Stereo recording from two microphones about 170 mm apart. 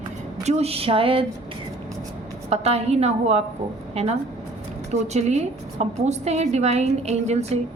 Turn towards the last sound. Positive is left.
turn(degrees=-40)  # may be behind; listen again after turning